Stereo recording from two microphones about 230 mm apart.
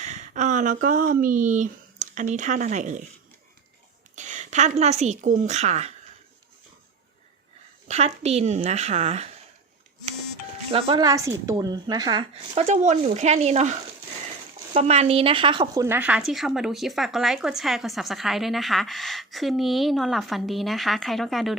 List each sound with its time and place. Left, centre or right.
0.0 s speech: right
4.1 s a woman's voice: right
7.9 s speech: right
10.7 s a woman's voice: right; by 21.5 s centre